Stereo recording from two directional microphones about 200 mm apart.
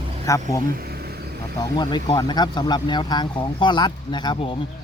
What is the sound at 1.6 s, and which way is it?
Speech, 20° left (ahead or behind).